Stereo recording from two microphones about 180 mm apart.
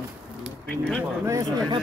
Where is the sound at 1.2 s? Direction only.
20° right (ahead or behind).